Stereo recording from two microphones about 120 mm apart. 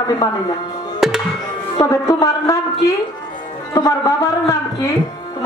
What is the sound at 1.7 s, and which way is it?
Speech, 25° left (ahead or behind).